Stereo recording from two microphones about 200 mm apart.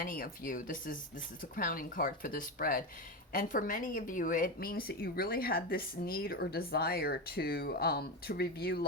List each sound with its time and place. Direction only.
0.0 s speech: 45° left (ahead or behind)